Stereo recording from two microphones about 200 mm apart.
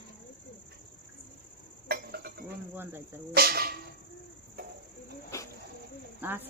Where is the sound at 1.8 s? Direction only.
50° right (ahead or behind).